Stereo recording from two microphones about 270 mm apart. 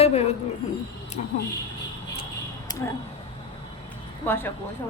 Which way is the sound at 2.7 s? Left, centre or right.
Centre.